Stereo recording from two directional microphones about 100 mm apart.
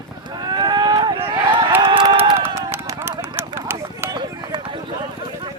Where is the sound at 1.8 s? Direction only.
50° right (ahead or behind).